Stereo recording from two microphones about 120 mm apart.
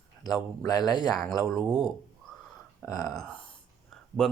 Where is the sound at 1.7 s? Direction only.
Centre (ahead or behind).